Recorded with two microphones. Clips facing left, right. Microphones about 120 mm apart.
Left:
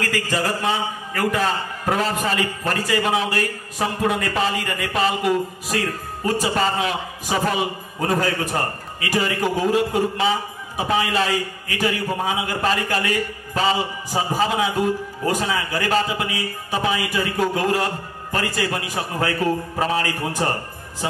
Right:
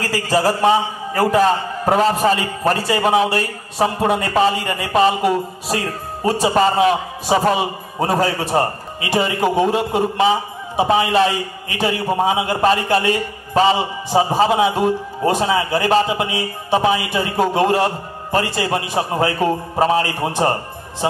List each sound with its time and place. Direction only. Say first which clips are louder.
0.0 s a man's voice: right 6 dB; 35° right (ahead or behind)